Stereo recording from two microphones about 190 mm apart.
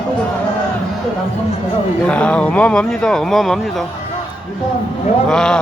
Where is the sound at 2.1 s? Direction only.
5° left (ahead or behind).